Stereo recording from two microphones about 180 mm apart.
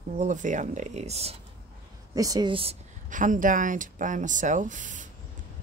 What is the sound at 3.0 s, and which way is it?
Speech, 45° right (ahead or behind).